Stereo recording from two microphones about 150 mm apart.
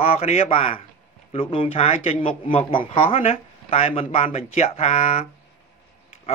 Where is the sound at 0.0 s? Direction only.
40° left (ahead or behind).